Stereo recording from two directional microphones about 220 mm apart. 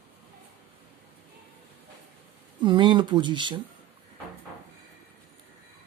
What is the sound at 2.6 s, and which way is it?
Speech, 20° right (ahead or behind).